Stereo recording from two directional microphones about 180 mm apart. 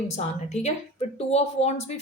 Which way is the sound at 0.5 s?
35° left (ahead or behind).